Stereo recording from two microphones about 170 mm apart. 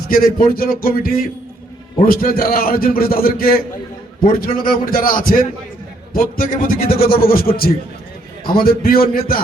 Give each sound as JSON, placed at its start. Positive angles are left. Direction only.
{"t": 0.1, "sound": "a man's voice", "side_deg": 55}